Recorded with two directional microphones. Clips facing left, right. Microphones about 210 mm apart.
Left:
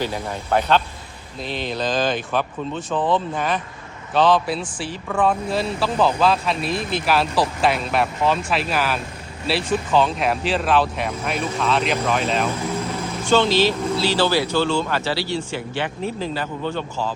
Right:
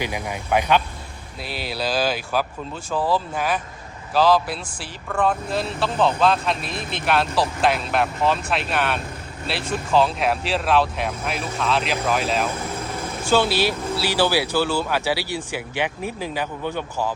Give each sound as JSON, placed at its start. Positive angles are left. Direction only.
{"t": 0.0, "sound": "speech", "side_deg": -10}